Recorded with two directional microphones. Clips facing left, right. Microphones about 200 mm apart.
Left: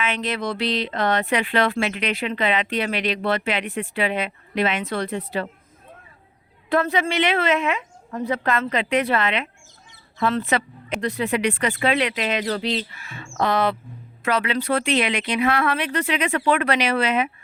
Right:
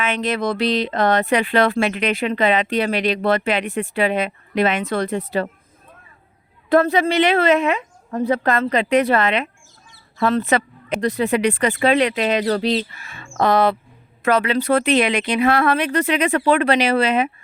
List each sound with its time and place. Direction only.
0.0 s speech: 45° right (ahead or behind)
6.7 s speech: 40° right (ahead or behind)